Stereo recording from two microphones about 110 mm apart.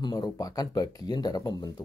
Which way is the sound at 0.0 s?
35° left (ahead or behind).